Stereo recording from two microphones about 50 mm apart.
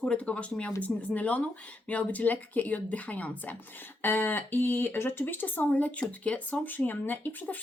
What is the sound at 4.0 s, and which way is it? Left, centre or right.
Speech, left.